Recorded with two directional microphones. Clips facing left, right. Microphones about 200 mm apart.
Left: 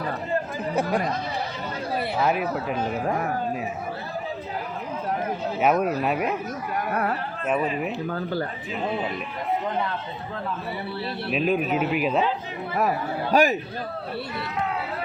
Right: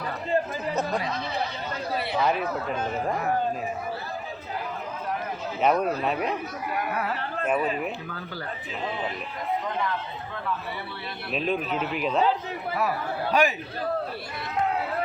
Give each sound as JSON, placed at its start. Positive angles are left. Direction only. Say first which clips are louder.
{"t": 2.1, "sound": "speech", "louder": "left 1 dB", "side_deg": 5}
{"t": 5.5, "sound": "speech", "louder": "left 1 dB", "side_deg": 10}
{"t": 7.4, "sound": "speech", "louder": "left 1 dB", "side_deg": 0}
{"t": 8.1, "sound": "speech", "louder": "left 10 dB", "side_deg": 40}
{"t": 11.3, "sound": "speech", "louder": "left 4 dB", "side_deg": 5}
{"t": 13.3, "sound": "a man's voice", "louder": "left 4 dB", "side_deg": 45}